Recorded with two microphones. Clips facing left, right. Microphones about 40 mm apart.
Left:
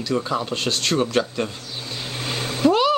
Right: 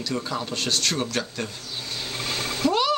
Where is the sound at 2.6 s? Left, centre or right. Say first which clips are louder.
Left 5 dB; centre.